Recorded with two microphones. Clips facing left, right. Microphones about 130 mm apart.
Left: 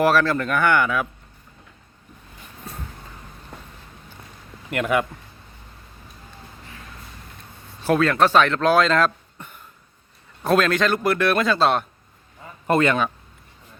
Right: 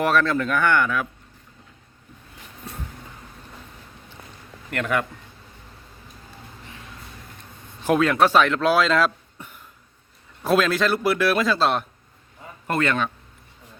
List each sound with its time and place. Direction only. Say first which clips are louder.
0.0 s a man's voice: left 2 dB; 5° left (ahead or behind)
3.5 s vehicle: left 5 dB; 60° left (ahead or behind)
4.7 s speech: left 3 dB; 10° left (ahead or behind)
7.8 s a man's voice: even; 15° right (ahead or behind)
12.6 s speech: left 4 dB; 20° left (ahead or behind)